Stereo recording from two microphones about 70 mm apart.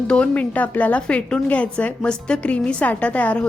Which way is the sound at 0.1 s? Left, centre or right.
Centre.